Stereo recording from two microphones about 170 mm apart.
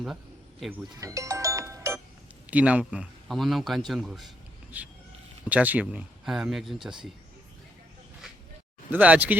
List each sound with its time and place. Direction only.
0.9 s music: 20° right (ahead or behind)
2.5 s a man's voice: 10° right (ahead or behind)
8.9 s speech: 10° right (ahead or behind)